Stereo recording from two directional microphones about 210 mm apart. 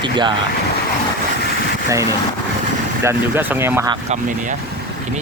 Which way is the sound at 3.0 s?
10° right (ahead or behind).